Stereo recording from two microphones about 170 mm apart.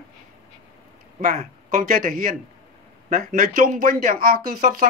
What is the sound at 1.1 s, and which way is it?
Speech, 45° right (ahead or behind).